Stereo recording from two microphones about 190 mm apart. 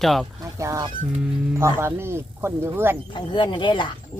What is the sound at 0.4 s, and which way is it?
Speech, 15° right (ahead or behind).